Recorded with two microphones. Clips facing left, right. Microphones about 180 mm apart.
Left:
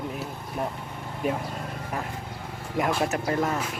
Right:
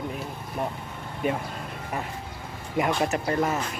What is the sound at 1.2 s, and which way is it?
Speech, centre (ahead or behind).